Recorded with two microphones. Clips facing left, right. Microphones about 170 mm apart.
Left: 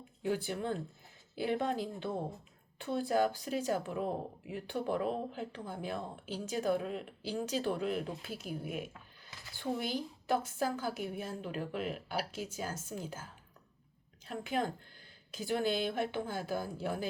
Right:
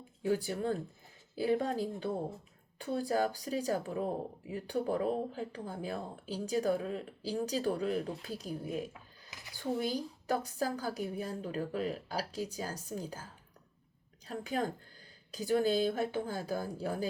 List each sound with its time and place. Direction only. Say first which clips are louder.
0.3 s speech: right 2 dB; 40° right (ahead or behind)
9.3 s a sound: right 1 dB; 15° right (ahead or behind)
9.6 s speech: right 2 dB; 40° right (ahead or behind)